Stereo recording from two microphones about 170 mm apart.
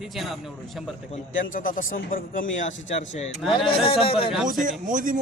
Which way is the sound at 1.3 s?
50° left (ahead or behind).